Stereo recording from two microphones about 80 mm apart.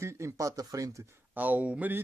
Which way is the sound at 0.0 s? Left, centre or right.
Right.